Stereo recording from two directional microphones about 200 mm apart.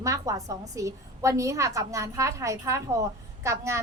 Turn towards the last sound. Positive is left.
turn(degrees=-15)  # may be behind; listen again after turning